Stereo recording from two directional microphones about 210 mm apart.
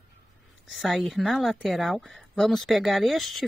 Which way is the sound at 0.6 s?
Centre (ahead or behind).